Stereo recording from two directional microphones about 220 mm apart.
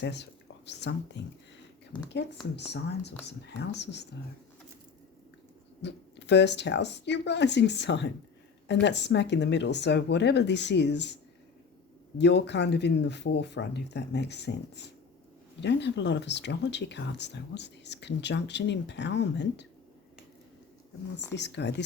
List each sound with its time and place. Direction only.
0.0 s speech: 50° left (ahead or behind)
5.8 s speech: 50° left (ahead or behind)
21.3 s speech: 50° left (ahead or behind)